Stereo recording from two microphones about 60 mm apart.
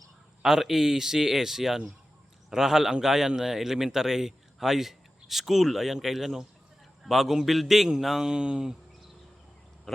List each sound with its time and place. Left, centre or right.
0.4 s a man's voice: centre